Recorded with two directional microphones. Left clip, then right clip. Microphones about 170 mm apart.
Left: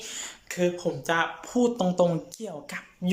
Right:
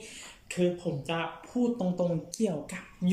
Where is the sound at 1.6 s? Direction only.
10° right (ahead or behind).